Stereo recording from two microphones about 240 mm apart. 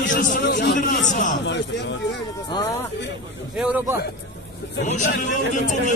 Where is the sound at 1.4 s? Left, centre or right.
Left.